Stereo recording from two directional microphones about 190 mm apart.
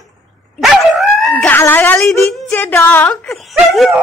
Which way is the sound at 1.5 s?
10° left (ahead or behind).